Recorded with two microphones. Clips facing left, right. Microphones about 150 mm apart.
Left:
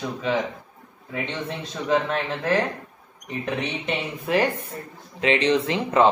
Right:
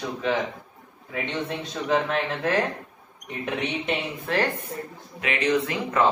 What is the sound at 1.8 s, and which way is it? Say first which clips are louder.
Speech: left 1 dB; centre (ahead or behind).